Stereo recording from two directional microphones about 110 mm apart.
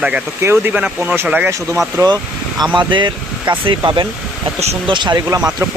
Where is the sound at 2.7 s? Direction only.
45° right (ahead or behind).